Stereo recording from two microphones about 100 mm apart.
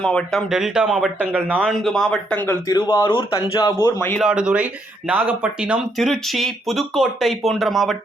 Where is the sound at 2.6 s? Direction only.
40° left (ahead or behind).